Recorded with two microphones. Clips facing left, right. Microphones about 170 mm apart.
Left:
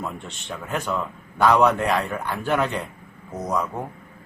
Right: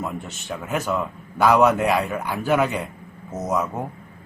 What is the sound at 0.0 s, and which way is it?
A man's voice, 5° right (ahead or behind).